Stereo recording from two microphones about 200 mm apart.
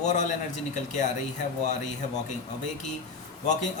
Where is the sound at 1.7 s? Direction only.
35° left (ahead or behind).